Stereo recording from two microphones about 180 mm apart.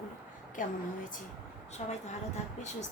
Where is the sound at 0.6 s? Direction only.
45° left (ahead or behind).